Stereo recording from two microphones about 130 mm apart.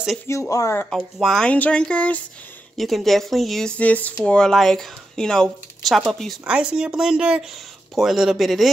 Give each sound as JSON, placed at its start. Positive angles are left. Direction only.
{"t": 0.3, "sound": "speech", "side_deg": 25}
{"t": 0.8, "sound": "speech", "side_deg": 0}